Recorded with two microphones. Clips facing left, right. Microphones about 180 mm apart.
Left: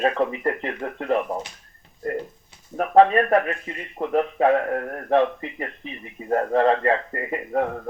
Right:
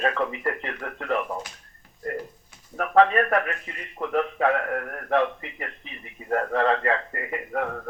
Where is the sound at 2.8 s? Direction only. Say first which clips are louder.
Left 3 dB; 30° left (ahead or behind).